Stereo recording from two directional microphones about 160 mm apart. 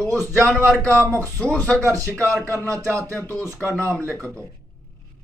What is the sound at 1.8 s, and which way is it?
Speech, 20° right (ahead or behind).